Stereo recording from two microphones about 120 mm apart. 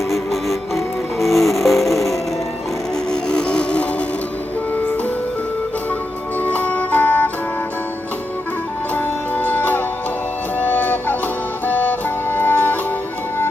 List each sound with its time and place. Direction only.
1.2 s music: centre (ahead or behind)
3.1 s a sound: 5° left (ahead or behind)
6.4 s music: 15° left (ahead or behind)
9.0 s music: 15° left (ahead or behind)